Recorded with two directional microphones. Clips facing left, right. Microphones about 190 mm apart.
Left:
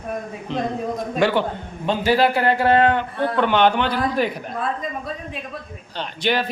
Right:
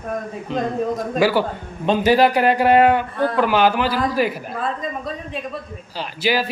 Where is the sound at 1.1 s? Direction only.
5° right (ahead or behind).